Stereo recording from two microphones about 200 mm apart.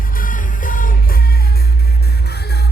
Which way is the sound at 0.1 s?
45° left (ahead or behind).